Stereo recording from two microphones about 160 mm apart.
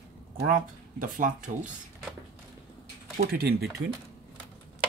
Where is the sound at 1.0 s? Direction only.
55° right (ahead or behind).